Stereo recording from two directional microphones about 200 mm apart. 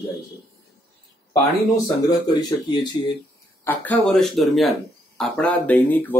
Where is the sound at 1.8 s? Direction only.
20° left (ahead or behind).